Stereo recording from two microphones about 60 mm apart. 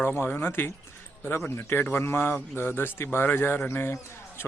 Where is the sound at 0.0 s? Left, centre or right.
Left.